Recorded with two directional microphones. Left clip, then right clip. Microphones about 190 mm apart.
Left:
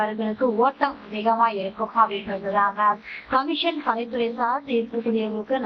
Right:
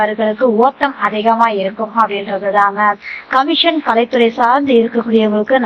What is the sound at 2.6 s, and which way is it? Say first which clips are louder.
A woman's voice: right 7 dB; 25° right (ahead or behind).